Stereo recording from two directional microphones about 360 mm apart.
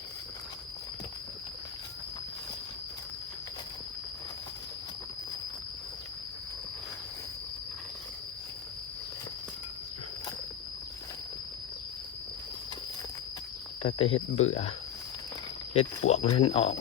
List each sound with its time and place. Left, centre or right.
13.8 s speech: centre
15.7 s speech: centre